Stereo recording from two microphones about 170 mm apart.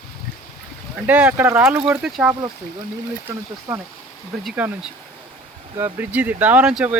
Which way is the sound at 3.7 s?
10° right (ahead or behind).